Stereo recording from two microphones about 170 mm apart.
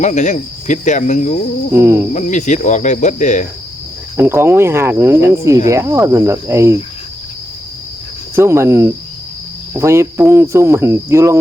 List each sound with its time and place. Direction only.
0.0 s speech: 45° left (ahead or behind)
1.7 s speech: 15° right (ahead or behind)
2.1 s speech: 45° left (ahead or behind)
4.2 s speech: 15° right (ahead or behind)
8.4 s speech: 15° right (ahead or behind)